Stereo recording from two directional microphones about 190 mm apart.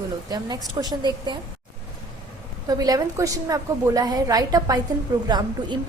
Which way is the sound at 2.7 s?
20° right (ahead or behind).